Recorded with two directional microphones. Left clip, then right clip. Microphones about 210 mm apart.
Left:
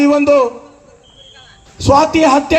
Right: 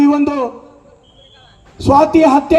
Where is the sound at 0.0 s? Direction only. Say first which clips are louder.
Left 4 dB; 55° right (ahead or behind).